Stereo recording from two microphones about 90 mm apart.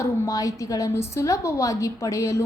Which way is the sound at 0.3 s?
40° left (ahead or behind).